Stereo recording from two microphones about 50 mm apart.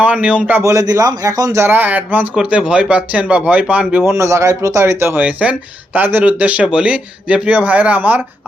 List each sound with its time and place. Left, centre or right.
0.0 s a man's voice: right
0.6 s a man's voice: right
1.7 s speech: right
2.3 s a man's voice: centre
4.0 s a man's voice: right
5.1 s speech: right
6.2 s a man's voice: right